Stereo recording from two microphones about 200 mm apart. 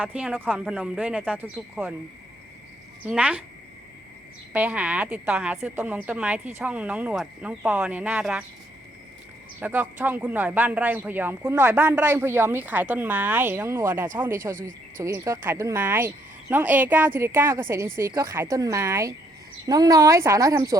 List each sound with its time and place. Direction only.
0.0 s a man's voice: 5° right (ahead or behind)
3.1 s a man's voice: 5° right (ahead or behind)
4.5 s a man's voice: 5° right (ahead or behind)
9.6 s a man's voice: 10° right (ahead or behind)